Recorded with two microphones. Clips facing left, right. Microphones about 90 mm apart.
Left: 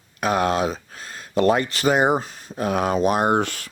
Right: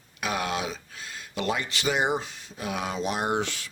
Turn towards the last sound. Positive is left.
turn(degrees=50)  # may be behind; listen again after turning